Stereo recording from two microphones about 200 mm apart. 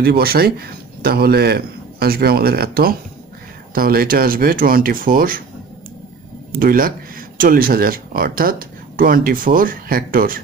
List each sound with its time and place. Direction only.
0.0 s speech: 50° right (ahead or behind)
6.5 s speech: 45° right (ahead or behind)